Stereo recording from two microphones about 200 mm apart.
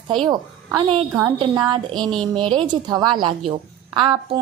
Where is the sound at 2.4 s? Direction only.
25° right (ahead or behind).